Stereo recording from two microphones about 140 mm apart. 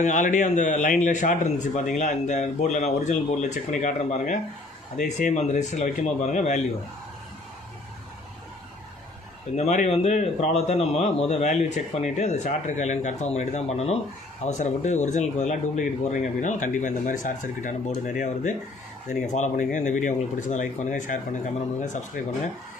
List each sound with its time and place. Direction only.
0.0 s a man's voice: 65° left (ahead or behind)
9.6 s a man's voice: 55° left (ahead or behind)